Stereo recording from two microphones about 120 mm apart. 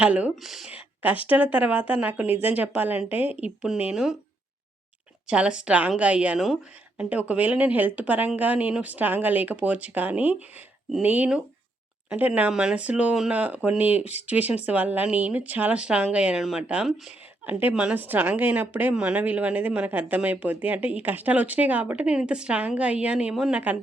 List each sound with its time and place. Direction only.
0.0 s a woman's voice: 10° right (ahead or behind)
0.7 s a sound: 15° right (ahead or behind)
1.3 s a woman's voice: 10° right (ahead or behind)
5.3 s a woman's voice: 5° right (ahead or behind)